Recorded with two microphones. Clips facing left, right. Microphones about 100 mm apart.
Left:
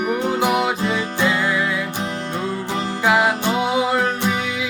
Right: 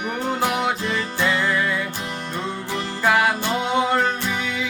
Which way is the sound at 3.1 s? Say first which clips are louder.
Left 1 dB; 10° left (ahead or behind).